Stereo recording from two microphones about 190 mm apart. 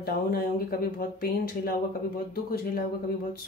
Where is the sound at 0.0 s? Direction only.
50° left (ahead or behind).